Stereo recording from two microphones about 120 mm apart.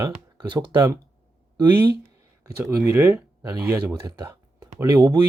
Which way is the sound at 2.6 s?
25° right (ahead or behind).